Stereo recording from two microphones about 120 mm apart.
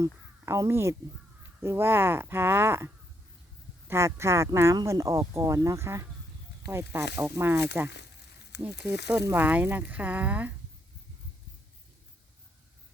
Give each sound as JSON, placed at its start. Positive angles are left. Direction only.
{"t": 0.0, "sound": "speech", "side_deg": -25}